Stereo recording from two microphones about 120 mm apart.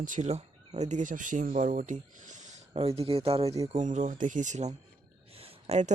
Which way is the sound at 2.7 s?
55° right (ahead or behind).